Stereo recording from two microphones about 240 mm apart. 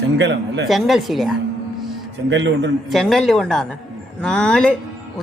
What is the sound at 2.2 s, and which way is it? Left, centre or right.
Speech, right.